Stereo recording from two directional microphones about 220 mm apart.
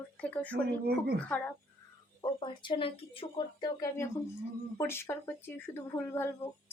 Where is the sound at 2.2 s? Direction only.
20° left (ahead or behind).